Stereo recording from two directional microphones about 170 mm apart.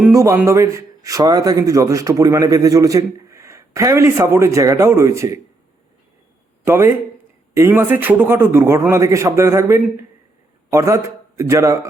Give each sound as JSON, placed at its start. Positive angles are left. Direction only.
{"t": 0.0, "sound": "speech", "side_deg": -15}
{"t": 6.7, "sound": "a man's voice", "side_deg": -15}